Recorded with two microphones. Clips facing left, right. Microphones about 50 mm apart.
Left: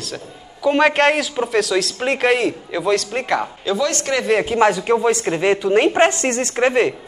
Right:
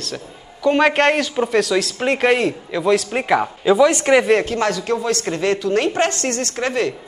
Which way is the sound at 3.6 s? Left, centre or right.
Centre.